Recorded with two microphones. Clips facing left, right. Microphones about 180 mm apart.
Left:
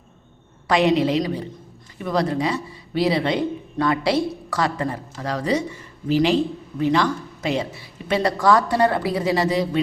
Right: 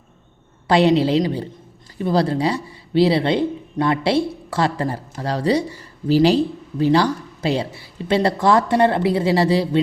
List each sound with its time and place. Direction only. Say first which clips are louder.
0.7 s a woman's voice: right 3 dB; 30° right (ahead or behind)